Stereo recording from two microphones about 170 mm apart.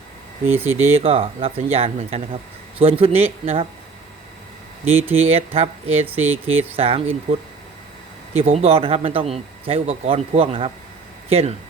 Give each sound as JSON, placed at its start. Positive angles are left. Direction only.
{"t": 0.4, "sound": "speech", "side_deg": -10}
{"t": 0.9, "sound": "speech", "side_deg": -35}
{"t": 5.1, "sound": "speech", "side_deg": -35}
{"t": 8.3, "sound": "speech", "side_deg": -40}